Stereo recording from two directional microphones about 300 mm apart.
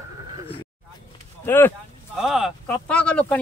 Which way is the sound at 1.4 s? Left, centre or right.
Centre.